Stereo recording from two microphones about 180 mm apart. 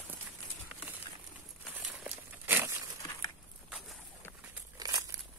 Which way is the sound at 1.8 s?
10° right (ahead or behind).